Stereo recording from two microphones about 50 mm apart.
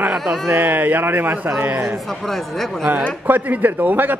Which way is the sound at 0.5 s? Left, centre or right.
Right.